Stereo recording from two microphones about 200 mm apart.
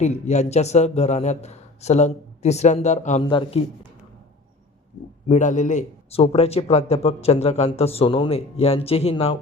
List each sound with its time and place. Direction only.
0.0 s a man's voice: 35° left (ahead or behind)
3.2 s a man's voice: 25° left (ahead or behind)
5.3 s a man's voice: 40° left (ahead or behind)